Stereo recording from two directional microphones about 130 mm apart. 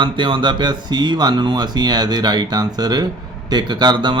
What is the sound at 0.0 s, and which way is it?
Speech, 40° right (ahead or behind).